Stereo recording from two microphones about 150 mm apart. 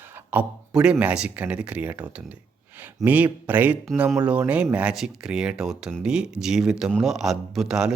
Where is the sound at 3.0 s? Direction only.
10° right (ahead or behind).